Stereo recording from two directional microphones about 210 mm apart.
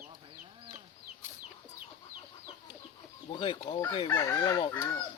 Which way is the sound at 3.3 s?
25° left (ahead or behind).